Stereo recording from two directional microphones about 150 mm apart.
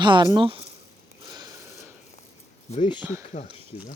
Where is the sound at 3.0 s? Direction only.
15° right (ahead or behind).